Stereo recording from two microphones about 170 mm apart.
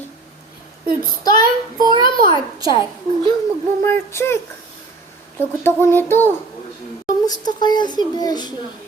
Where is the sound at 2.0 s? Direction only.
25° left (ahead or behind).